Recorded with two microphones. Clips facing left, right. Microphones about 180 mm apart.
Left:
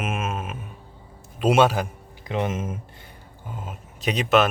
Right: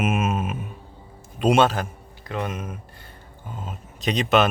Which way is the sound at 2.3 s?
20° left (ahead or behind).